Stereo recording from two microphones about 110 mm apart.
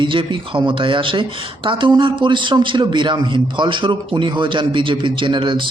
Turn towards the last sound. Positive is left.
turn(degrees=-50)  # may be behind; listen again after turning